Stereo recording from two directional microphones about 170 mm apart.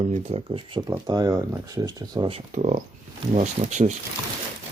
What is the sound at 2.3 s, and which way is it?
Speech, 45° right (ahead or behind).